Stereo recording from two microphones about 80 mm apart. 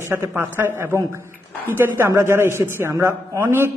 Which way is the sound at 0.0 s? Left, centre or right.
Right.